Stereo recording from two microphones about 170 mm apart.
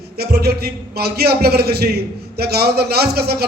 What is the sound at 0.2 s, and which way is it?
A man's voice, 70° right (ahead or behind).